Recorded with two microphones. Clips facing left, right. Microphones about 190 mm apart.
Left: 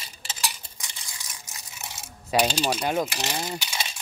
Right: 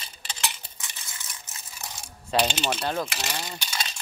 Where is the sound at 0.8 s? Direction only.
15° left (ahead or behind).